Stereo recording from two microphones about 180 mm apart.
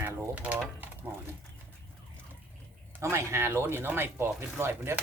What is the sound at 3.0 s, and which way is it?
Speech, 15° right (ahead or behind).